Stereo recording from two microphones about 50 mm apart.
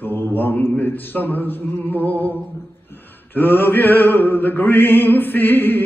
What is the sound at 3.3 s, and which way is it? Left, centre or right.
Mantra, left.